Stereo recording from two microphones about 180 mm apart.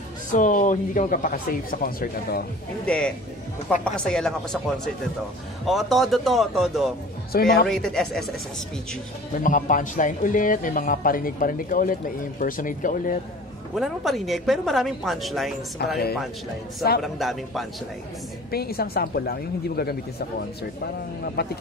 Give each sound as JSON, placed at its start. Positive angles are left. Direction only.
{"t": 0.3, "sound": "speech", "side_deg": 45}
{"t": 2.8, "sound": "a woman's voice", "side_deg": 5}
{"t": 9.4, "sound": "speech", "side_deg": 45}
{"t": 13.7, "sound": "a woman's voice", "side_deg": 0}
{"t": 15.8, "sound": "speech", "side_deg": 60}
{"t": 17.0, "sound": "a woman's voice", "side_deg": 0}
{"t": 18.5, "sound": "speech", "side_deg": 60}